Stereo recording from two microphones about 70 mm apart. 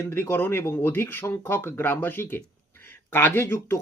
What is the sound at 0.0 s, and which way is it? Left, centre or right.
Speech, left.